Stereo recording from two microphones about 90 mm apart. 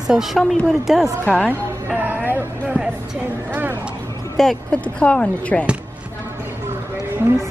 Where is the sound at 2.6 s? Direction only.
10° right (ahead or behind).